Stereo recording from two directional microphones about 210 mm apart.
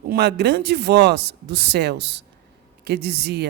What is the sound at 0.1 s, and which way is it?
Speech, 50° right (ahead or behind).